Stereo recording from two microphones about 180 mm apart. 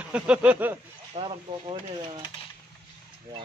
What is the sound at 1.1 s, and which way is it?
Speech, 30° right (ahead or behind).